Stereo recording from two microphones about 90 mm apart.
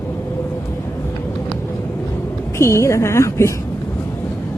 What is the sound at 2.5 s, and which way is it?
Speech, 30° left (ahead or behind).